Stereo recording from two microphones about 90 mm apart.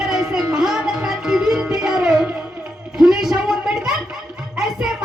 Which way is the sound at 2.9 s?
5° right (ahead or behind).